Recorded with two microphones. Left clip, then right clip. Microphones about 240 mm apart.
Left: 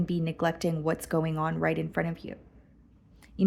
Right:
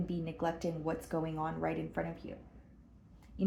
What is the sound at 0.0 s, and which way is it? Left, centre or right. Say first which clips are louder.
Speech: left 7 dB; left.